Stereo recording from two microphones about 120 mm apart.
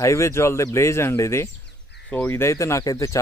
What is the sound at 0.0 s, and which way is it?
Speech, 25° left (ahead or behind).